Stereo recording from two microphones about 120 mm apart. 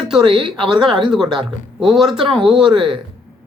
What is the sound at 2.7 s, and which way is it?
Speech, 45° right (ahead or behind).